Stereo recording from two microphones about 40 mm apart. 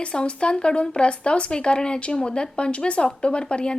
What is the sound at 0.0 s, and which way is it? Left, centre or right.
A woman's voice, left.